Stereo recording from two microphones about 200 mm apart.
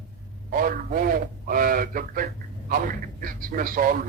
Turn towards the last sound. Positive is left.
turn(degrees=-45)  # may be behind; listen again after turning